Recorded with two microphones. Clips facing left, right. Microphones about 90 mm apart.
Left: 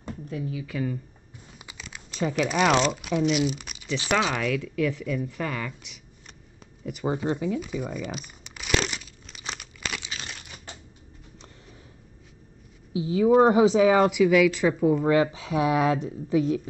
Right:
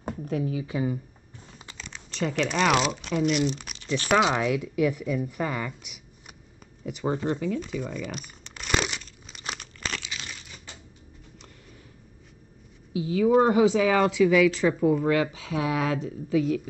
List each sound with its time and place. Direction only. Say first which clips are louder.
0.0 s a sound: right 5 dB; 55° right (ahead or behind)
0.4 s speech: right 4 dB; 35° right (ahead or behind)
1.6 s crumpling: even; 10° left (ahead or behind)
2.7 s speech: left 2 dB; 5° right (ahead or behind)
4.2 s speech: right 2 dB; 20° right (ahead or behind)
6.9 s tearing: even; 5° left (ahead or behind)
12.9 s speech: left 1 dB; 25° left (ahead or behind)
14.2 s speech: even; 10° left (ahead or behind)
15.0 s speech: left 3 dB; 25° left (ahead or behind)